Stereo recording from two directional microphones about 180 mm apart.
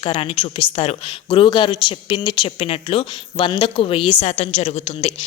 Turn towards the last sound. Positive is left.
turn(degrees=35)  # may be behind; listen again after turning